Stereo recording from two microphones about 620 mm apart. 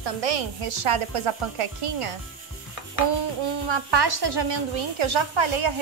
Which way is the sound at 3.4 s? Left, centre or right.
Right.